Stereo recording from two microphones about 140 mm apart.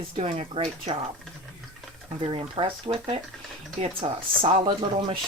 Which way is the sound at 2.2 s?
40° right (ahead or behind).